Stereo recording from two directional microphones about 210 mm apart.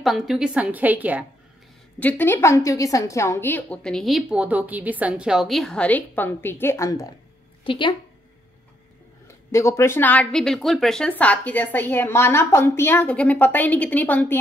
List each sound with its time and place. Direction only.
0.0 s a woman's voice: centre (ahead or behind)
2.0 s a woman's voice: 10° left (ahead or behind)
9.5 s a woman's voice: 15° left (ahead or behind)